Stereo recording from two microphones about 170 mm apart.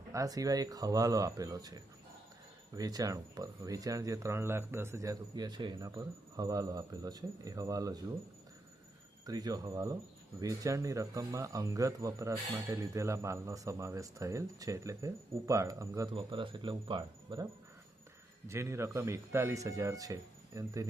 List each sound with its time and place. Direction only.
0.1 s speech: 20° right (ahead or behind)
9.2 s speech: 20° right (ahead or behind)
16.1 s speech: 30° right (ahead or behind)
18.4 s speech: 15° right (ahead or behind)